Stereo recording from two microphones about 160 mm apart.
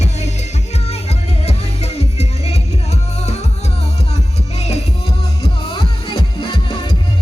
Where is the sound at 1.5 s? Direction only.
40° left (ahead or behind).